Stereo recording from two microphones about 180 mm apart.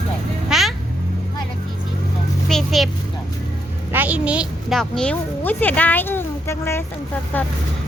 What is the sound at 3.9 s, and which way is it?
A woman's voice, 10° right (ahead or behind).